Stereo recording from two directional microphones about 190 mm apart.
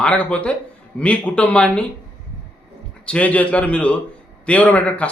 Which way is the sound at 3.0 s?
5° left (ahead or behind).